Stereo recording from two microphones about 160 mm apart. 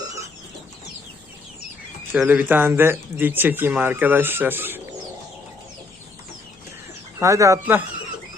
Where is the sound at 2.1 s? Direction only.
10° right (ahead or behind).